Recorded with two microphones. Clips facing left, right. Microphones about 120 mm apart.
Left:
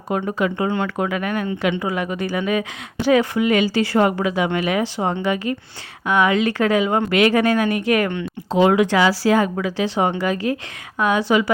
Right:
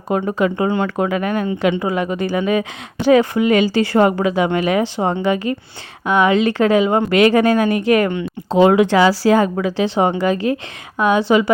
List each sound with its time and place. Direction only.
0.3 s speech: 35° right (ahead or behind)